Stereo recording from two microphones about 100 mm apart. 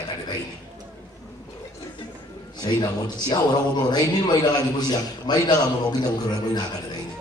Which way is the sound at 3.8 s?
45° left (ahead or behind).